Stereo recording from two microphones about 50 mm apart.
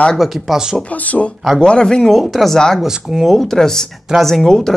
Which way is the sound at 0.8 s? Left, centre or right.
Left.